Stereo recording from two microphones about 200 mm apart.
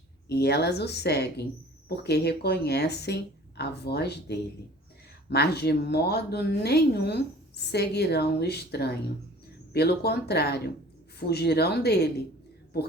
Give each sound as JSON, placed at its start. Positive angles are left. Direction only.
{"t": 0.3, "sound": "a woman's voice", "side_deg": 55}